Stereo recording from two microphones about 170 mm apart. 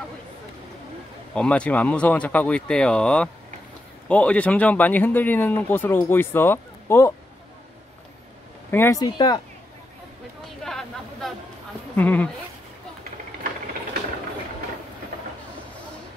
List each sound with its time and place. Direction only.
1.3 s speech: 5° left (ahead or behind)
8.6 s speech: 15° left (ahead or behind)
10.6 s a sound: centre (ahead or behind)
11.9 s speech: 10° left (ahead or behind)